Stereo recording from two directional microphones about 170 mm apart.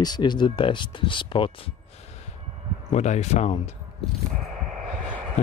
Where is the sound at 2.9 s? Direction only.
40° left (ahead or behind).